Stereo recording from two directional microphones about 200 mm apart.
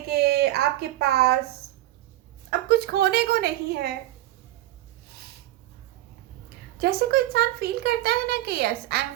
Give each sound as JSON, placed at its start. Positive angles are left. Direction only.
{"t": 0.1, "sound": "a sound", "side_deg": -55}
{"t": 2.5, "sound": "speech", "side_deg": -55}
{"t": 6.7, "sound": "speech", "side_deg": -50}